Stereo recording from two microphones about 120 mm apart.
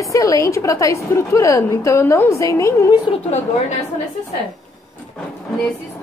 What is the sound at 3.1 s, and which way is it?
Speech, 40° left (ahead or behind).